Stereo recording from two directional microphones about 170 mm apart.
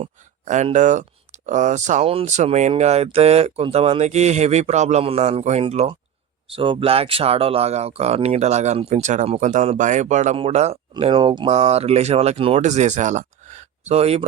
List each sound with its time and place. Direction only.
0.0 s speech: 45° right (ahead or behind)
10.9 s speech: 30° right (ahead or behind)